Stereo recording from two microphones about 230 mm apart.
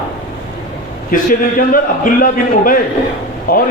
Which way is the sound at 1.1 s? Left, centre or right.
Left.